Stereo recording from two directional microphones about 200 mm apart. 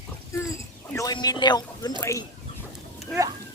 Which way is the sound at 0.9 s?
15° left (ahead or behind).